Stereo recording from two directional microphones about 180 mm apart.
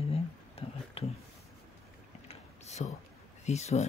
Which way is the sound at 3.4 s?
40° left (ahead or behind).